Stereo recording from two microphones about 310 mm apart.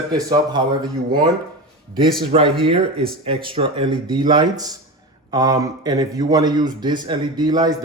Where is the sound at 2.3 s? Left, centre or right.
Centre.